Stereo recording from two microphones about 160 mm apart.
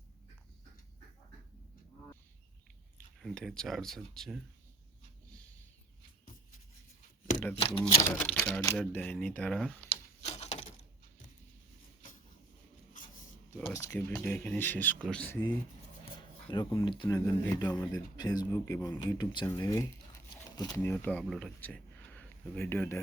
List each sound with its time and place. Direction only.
3.2 s speech: centre (ahead or behind)
7.5 s speech: 35° left (ahead or behind)
8.0 s speech: 5° left (ahead or behind)
9.9 s a sound: 45° left (ahead or behind)
13.7 s speech: 20° left (ahead or behind)
16.5 s speech: 30° left (ahead or behind); by 23.0 s 15° left (ahead or behind)